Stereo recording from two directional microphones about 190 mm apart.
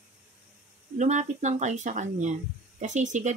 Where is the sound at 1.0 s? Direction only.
40° right (ahead or behind).